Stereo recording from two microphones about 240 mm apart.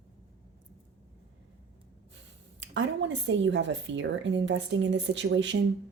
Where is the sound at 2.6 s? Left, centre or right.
Right.